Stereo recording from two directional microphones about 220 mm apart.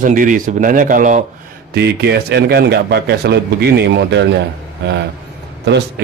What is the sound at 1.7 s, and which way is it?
A man's voice, 50° right (ahead or behind).